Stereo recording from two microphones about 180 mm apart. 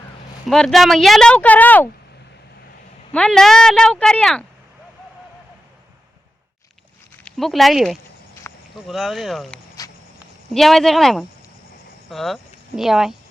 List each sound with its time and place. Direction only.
0.4 s speech: centre (ahead or behind)
3.1 s speech: 5° left (ahead or behind)
7.3 s speech: centre (ahead or behind)
8.4 s a sound: 15° left (ahead or behind)
8.9 s speech: centre (ahead or behind)
9.8 s walk: 20° left (ahead or behind)
10.5 s speech: centre (ahead or behind)